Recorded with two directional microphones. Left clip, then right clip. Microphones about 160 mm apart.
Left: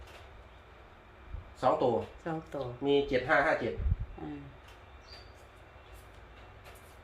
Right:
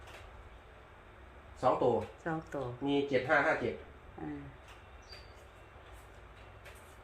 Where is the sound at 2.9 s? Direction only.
25° left (ahead or behind).